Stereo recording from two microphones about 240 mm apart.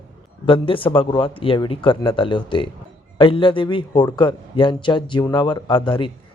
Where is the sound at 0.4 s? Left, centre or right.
Left.